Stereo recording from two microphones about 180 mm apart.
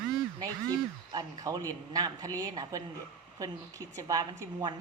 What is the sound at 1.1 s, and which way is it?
A woman's voice, 20° right (ahead or behind).